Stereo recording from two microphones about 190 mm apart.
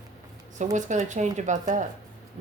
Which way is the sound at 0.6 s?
40° right (ahead or behind).